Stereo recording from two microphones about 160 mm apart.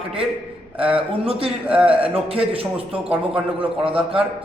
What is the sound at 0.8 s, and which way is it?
Speech, 35° right (ahead or behind).